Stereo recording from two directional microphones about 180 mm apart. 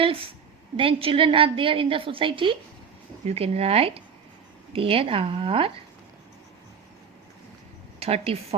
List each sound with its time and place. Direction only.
0.0 s a woman's voice: 30° right (ahead or behind)
8.0 s speech: 35° right (ahead or behind)